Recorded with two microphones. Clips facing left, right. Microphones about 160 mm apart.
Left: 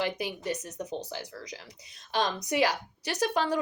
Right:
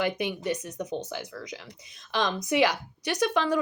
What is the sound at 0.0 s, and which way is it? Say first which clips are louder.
Speech: right 3 dB; 35° left (ahead or behind).